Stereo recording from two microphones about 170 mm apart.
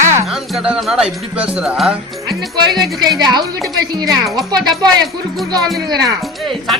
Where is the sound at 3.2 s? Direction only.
25° right (ahead or behind).